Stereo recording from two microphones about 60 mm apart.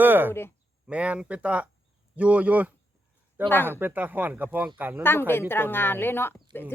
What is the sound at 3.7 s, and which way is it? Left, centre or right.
Speech, right.